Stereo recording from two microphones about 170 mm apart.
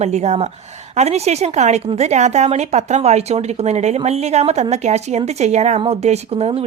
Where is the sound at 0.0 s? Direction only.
40° right (ahead or behind).